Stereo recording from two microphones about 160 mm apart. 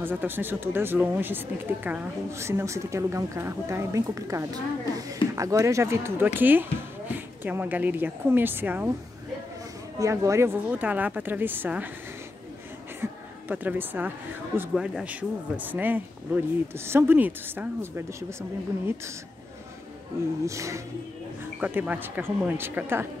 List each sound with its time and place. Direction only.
0.0 s speech: 10° right (ahead or behind)
9.9 s speech: 20° right (ahead or behind)
13.0 s speech: 10° right (ahead or behind)
20.4 s speech: 20° right (ahead or behind)
21.5 s speech: 10° right (ahead or behind)